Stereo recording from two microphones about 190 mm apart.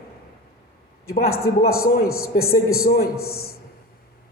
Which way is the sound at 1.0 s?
50° left (ahead or behind).